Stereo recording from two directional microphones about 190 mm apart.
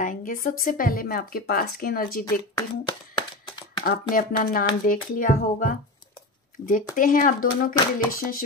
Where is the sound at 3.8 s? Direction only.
45° left (ahead or behind).